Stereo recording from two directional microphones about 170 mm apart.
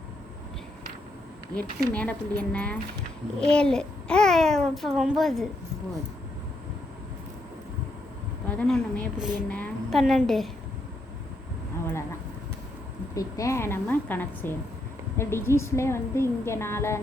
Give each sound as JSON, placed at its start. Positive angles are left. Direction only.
{"t": 1.5, "sound": "a woman's voice", "side_deg": 10}
{"t": 8.4, "sound": "a child's voice", "side_deg": 5}
{"t": 13.1, "sound": "a woman's voice", "side_deg": 20}